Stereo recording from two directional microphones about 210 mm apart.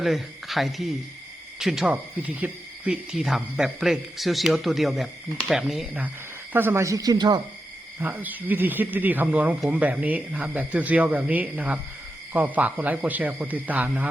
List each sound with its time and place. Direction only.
0.0 s speech: centre (ahead or behind); by 7.4 s 20° right (ahead or behind)
8.0 s speech: 10° right (ahead or behind)